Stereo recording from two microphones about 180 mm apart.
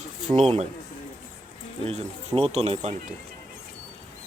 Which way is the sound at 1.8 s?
35° right (ahead or behind).